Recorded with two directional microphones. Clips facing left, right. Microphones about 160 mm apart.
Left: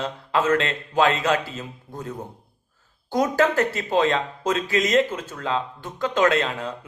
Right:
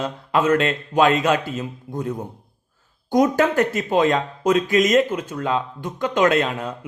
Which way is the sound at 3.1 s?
20° right (ahead or behind).